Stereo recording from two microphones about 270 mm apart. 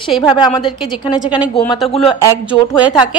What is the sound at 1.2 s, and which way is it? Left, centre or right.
Speech, centre.